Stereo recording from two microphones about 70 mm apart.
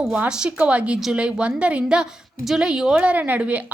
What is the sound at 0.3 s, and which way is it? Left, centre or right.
A woman's voice, centre.